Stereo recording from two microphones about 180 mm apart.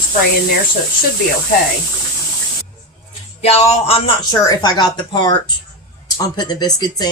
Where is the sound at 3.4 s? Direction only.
35° left (ahead or behind).